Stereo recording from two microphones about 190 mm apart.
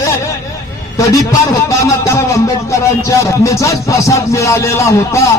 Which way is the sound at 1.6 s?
15° left (ahead or behind).